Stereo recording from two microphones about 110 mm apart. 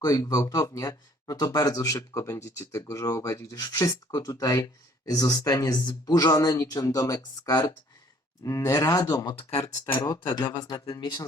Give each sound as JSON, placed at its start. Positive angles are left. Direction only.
{"t": 0.0, "sound": "speech", "side_deg": 35}